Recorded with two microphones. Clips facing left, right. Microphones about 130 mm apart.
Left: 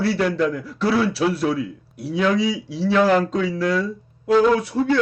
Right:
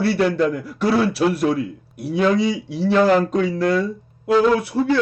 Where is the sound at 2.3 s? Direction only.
55° right (ahead or behind).